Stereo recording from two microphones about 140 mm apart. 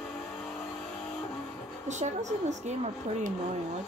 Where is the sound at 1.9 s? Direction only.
55° right (ahead or behind).